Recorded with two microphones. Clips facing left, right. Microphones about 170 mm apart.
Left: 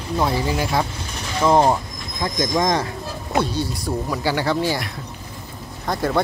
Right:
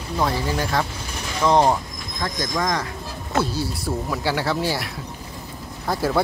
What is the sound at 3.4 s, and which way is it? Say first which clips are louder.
Speech: even; 5° right (ahead or behind).